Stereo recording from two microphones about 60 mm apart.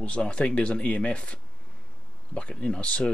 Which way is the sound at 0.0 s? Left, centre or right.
Centre.